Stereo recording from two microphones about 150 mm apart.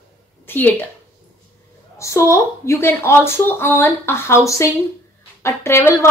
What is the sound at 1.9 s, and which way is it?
A woman's voice, 20° left (ahead or behind).